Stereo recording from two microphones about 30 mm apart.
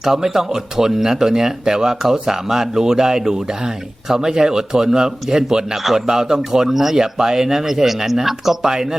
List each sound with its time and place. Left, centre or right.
0.0 s speech: centre
5.7 s speech: centre
6.7 s speech: centre
6.9 s speech: right
8.6 s speech: right